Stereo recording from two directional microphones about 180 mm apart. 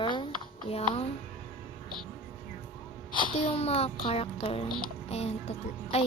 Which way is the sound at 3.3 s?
35° left (ahead or behind).